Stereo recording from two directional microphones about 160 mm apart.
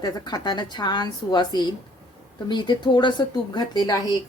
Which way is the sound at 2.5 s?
30° left (ahead or behind).